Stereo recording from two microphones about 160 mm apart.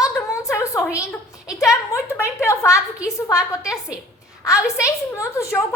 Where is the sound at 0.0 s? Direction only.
20° left (ahead or behind).